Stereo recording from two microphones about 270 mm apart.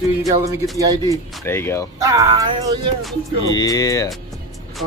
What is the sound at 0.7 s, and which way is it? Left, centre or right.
Speech, centre.